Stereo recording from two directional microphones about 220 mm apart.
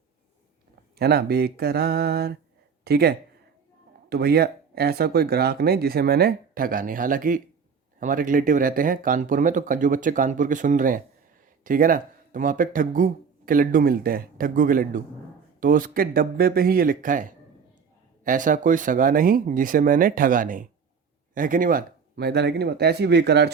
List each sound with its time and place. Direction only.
0.9 s speech: 45° right (ahead or behind)